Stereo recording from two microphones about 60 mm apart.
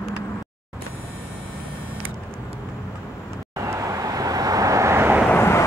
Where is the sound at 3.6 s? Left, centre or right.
Right.